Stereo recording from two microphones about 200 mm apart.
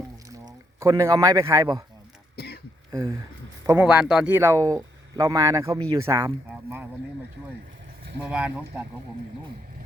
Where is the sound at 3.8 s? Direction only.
5° right (ahead or behind).